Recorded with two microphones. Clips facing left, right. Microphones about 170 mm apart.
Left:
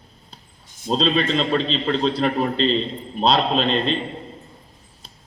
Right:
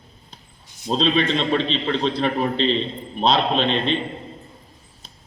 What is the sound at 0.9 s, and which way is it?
A man's voice, centre (ahead or behind).